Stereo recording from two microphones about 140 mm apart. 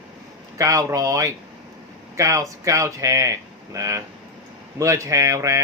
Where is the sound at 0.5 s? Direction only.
25° right (ahead or behind).